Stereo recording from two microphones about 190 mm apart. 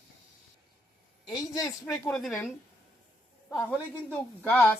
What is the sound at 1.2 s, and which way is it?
Speech, 20° left (ahead or behind).